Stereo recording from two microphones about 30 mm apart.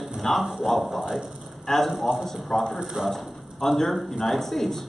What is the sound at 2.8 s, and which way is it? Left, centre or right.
Speech, centre.